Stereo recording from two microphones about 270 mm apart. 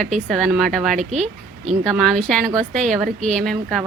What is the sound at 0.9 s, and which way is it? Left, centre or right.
Speech, right.